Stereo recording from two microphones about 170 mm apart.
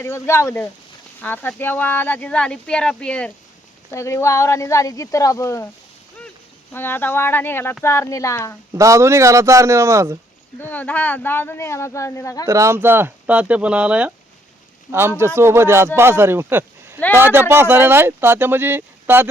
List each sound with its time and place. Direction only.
0.0 s speech: 15° left (ahead or behind)
6.7 s speech: 10° left (ahead or behind)
8.7 s speech: 20° right (ahead or behind)
10.6 s speech: 10° left (ahead or behind)
12.5 s speech: 15° right (ahead or behind)